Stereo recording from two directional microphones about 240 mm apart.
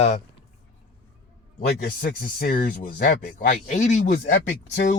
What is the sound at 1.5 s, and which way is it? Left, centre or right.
Speech, left.